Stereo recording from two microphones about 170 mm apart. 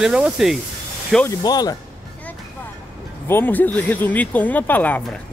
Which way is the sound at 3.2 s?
10° left (ahead or behind).